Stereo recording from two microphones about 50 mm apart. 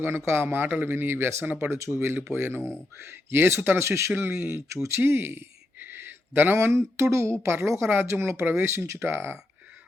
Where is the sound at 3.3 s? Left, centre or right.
Right.